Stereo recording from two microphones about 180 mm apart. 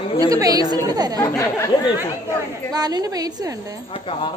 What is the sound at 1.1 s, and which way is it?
Speech, 20° left (ahead or behind).